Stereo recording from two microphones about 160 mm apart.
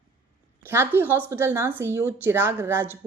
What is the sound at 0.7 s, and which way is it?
A woman's voice, 15° right (ahead or behind).